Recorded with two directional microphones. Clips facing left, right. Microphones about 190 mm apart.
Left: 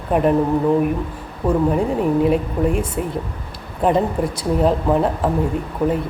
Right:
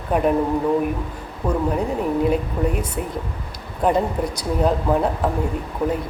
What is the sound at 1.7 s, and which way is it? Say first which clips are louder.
Speech: left 4 dB; 5° left (ahead or behind).